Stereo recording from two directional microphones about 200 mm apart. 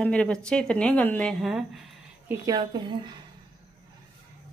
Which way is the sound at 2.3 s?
20° right (ahead or behind).